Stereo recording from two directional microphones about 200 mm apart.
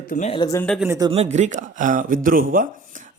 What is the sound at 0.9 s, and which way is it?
Speech, 20° right (ahead or behind).